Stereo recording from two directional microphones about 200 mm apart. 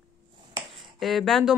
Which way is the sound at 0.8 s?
Centre (ahead or behind).